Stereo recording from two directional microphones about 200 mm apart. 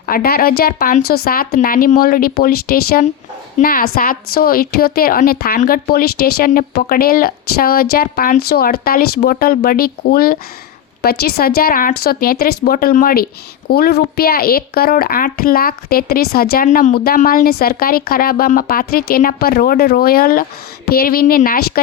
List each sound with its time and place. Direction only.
0.0 s a woman's voice: 45° left (ahead or behind)